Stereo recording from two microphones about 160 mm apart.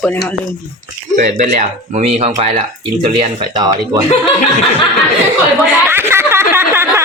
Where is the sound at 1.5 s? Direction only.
45° right (ahead or behind).